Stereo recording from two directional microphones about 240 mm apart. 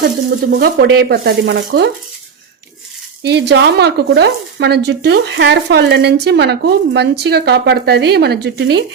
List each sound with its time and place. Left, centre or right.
0.6 s speech: right
3.2 s speech: right